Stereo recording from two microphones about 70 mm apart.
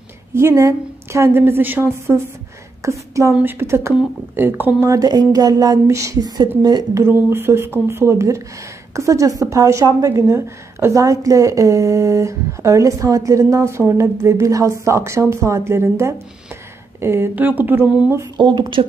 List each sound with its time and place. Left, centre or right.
0.3 s a woman's voice: right
1.4 s speech: right
2.8 s speech: right
3.4 s speech: right
4.7 s speech: right
5.1 s a sound: right
5.9 s speech: right
6.2 s a woman's voice: right
7.1 s speech: right
11.0 s speech: right
17.4 s speech: right
17.8 s speech: centre
18.4 s speech: right